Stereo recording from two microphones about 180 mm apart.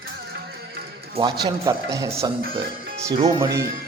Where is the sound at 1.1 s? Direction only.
25° right (ahead or behind).